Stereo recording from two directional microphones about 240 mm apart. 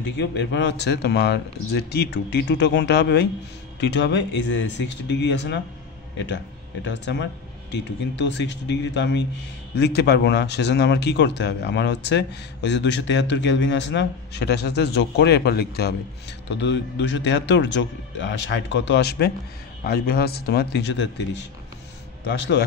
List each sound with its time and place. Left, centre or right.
0.2 s speech: left